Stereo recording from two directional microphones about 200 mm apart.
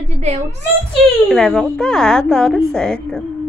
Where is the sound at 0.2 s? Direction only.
35° right (ahead or behind).